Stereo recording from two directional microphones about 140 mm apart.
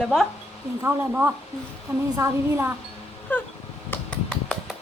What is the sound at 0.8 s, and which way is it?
Speech, 15° right (ahead or behind).